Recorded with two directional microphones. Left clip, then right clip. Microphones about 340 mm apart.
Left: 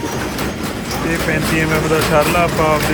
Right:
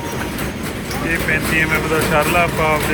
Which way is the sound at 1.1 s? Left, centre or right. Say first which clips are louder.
Even; centre.